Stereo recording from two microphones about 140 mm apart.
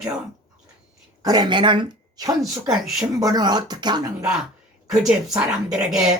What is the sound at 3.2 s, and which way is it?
Speech, 30° right (ahead or behind).